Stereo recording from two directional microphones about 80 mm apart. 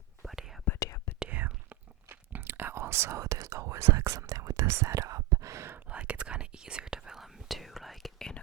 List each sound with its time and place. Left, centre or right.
0.3 s whispering: centre
0.8 s whispering: left
1.3 s whispering: right
4.3 s whispering: right
5.9 s whispering: centre